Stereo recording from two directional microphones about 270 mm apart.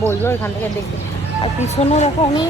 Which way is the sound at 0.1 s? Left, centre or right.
Centre.